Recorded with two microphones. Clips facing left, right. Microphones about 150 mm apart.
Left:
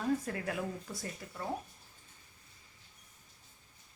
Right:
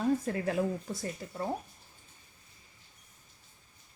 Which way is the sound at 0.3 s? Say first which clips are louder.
Right 7 dB; 30° right (ahead or behind).